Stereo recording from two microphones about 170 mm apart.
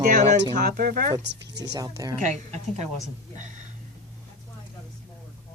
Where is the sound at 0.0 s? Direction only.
50° right (ahead or behind).